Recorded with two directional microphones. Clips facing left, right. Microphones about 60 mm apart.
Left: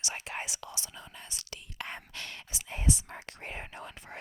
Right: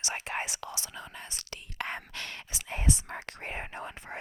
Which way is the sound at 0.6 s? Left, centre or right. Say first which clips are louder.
Right 4 dB; right.